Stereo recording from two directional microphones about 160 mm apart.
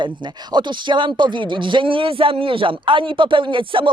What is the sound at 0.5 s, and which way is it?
Speech, 30° right (ahead or behind).